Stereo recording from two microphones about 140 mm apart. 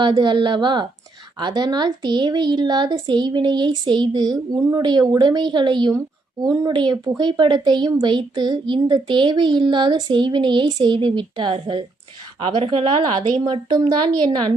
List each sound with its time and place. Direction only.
0.0 s a woman's voice: 35° right (ahead or behind)